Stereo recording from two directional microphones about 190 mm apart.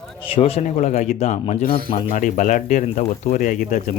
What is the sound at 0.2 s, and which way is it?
Speech, 30° left (ahead or behind).